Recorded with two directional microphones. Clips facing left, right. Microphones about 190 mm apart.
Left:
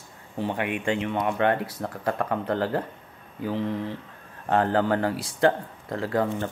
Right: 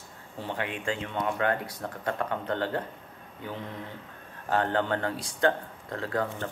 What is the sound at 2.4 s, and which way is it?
Speech, 35° left (ahead or behind).